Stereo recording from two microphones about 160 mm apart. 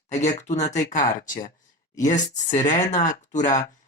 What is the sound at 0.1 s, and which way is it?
Speech, 45° left (ahead or behind).